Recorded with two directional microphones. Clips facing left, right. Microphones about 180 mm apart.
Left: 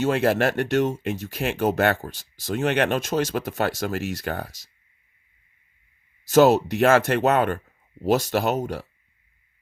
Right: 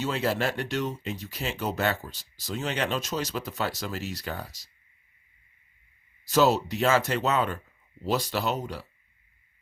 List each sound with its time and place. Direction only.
0.0 s speech: 55° left (ahead or behind)
6.2 s speech: 50° left (ahead or behind)